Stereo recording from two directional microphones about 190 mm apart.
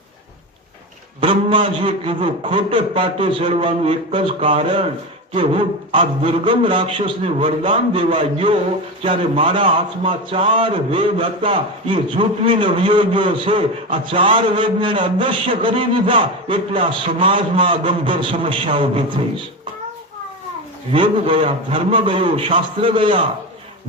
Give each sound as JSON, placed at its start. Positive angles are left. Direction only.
{"t": 1.2, "sound": "a man's voice", "side_deg": -25}
{"t": 20.9, "sound": "a man's voice", "side_deg": -30}